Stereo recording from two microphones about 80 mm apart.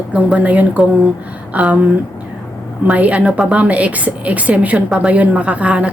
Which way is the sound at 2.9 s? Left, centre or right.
Centre.